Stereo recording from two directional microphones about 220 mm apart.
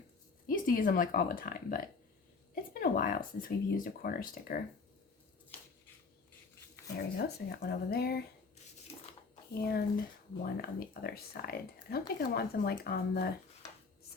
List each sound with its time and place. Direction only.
0.4 s speech: 40° left (ahead or behind)
2.8 s speech: 40° left (ahead or behind)
7.2 s speech: 45° left (ahead or behind)
9.3 s a sound: 45° left (ahead or behind)
10.4 s speech: 45° left (ahead or behind)